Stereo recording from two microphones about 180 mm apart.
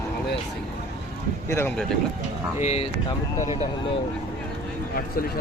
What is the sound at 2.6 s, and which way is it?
Speech, 35° left (ahead or behind).